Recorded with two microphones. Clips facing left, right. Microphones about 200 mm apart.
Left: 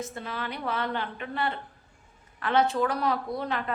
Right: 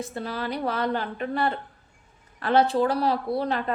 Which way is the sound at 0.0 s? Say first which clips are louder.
Right 4 dB; 35° right (ahead or behind).